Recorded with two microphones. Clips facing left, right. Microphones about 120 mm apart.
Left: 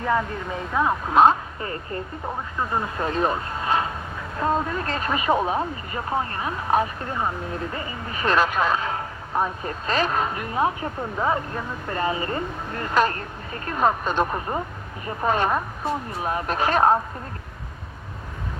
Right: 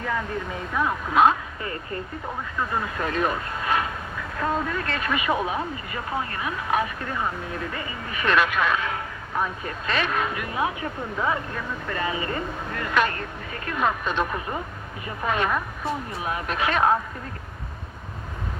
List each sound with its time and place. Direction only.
0.8 s speech: 30° left (ahead or behind)